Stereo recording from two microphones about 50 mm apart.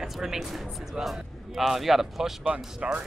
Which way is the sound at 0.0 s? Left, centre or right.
Centre.